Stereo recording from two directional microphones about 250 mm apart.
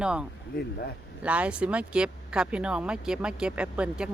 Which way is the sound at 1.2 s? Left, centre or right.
Centre.